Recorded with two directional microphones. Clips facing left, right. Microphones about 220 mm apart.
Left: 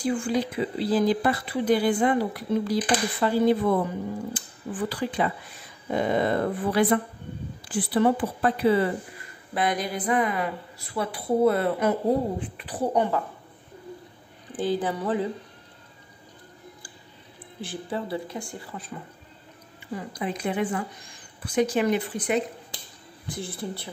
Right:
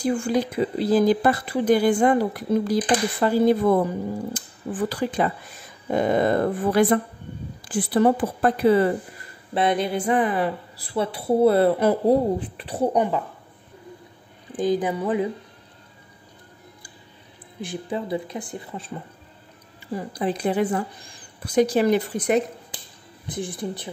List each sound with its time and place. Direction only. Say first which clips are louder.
0.0 s speech: right 3 dB; 45° right (ahead or behind)
9.5 s a woman's voice: right 5 dB; 25° right (ahead or behind)
12.9 s speech: even; 15° right (ahead or behind)
14.6 s speech: right 4 dB; 15° right (ahead or behind)
17.6 s a woman's voice: right 3 dB; 15° right (ahead or behind)
19.9 s a woman's voice: right 5 dB; 35° right (ahead or behind)
23.2 s speech: right 4 dB; 15° right (ahead or behind)